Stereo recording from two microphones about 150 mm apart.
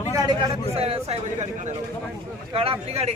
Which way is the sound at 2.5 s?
40° right (ahead or behind).